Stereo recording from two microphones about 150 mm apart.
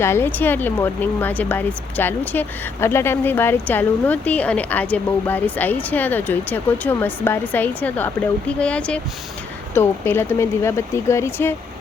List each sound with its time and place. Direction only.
0.0 s speech: 15° left (ahead or behind)